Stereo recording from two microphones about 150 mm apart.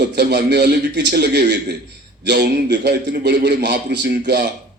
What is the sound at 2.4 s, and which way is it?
A man's voice, 90° right.